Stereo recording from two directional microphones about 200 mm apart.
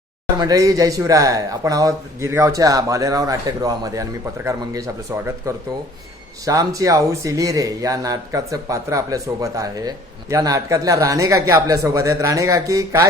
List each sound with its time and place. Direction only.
0.3 s speech: 15° right (ahead or behind)
6.4 s speech: 15° right (ahead or behind)